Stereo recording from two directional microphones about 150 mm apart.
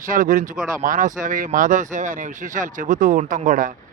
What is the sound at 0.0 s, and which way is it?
Speech, 65° right (ahead or behind).